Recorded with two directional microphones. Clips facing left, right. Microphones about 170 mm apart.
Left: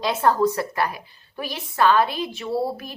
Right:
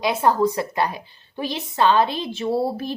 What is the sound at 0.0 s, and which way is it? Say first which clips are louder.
A woman's voice: right 1 dB; 15° right (ahead or behind).